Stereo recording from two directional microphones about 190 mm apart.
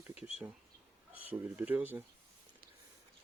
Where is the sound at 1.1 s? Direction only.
10° right (ahead or behind).